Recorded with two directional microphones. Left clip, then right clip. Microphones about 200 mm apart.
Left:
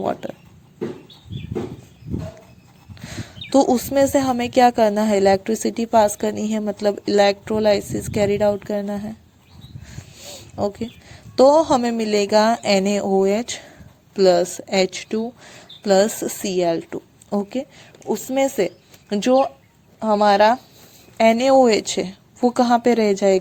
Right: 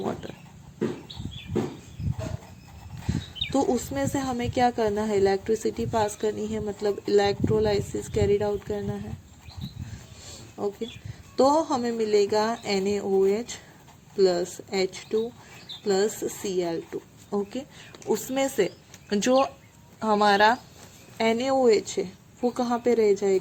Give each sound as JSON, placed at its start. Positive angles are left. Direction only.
{"t": 3.5, "sound": "a woman's voice", "side_deg": 40}
{"t": 10.2, "sound": "a sound", "side_deg": 35}
{"t": 11.3, "sound": "a woman's voice", "side_deg": 40}
{"t": 21.2, "sound": "a woman's voice", "side_deg": 40}